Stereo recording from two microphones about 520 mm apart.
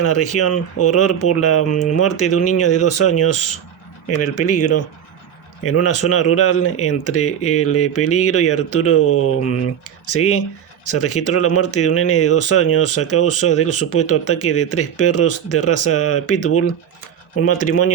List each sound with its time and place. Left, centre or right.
0.0 s speech: left